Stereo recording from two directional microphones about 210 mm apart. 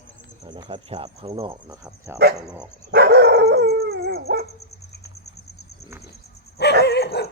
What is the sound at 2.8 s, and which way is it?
Dog, 50° right (ahead or behind).